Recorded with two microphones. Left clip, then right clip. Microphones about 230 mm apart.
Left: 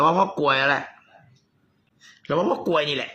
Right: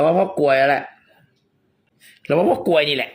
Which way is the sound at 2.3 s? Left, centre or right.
Right.